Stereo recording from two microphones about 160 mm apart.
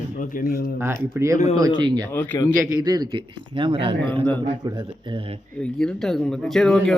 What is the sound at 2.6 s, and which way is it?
Speech, 25° right (ahead or behind).